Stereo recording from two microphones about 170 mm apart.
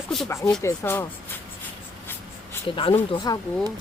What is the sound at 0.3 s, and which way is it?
Speech, 15° left (ahead or behind).